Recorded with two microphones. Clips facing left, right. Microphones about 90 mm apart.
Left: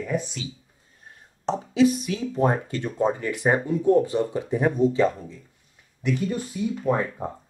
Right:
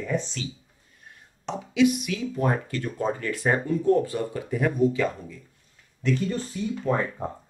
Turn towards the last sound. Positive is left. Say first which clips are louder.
# left 1 dB
turn(degrees=5)  # may be behind; listen again after turning